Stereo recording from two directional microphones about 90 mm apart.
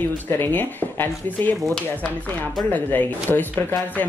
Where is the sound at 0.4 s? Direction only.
20° left (ahead or behind).